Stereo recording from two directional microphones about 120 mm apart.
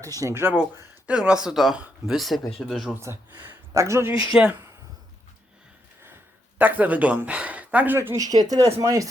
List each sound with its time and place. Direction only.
0.0 s speech: 30° right (ahead or behind)
0.5 s speech: 5° right (ahead or behind)
2.9 s speech: 20° right (ahead or behind)
6.6 s speech: 15° right (ahead or behind)
7.9 s speech: 25° right (ahead or behind)